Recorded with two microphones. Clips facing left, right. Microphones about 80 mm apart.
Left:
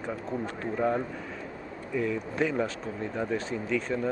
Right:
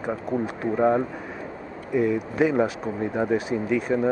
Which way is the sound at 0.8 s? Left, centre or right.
Right.